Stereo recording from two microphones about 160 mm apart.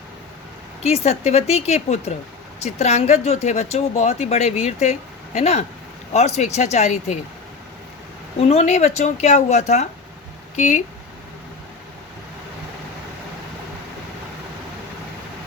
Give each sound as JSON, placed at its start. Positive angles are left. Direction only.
{"t": 0.8, "sound": "speech", "side_deg": 40}
{"t": 8.4, "sound": "speech", "side_deg": 40}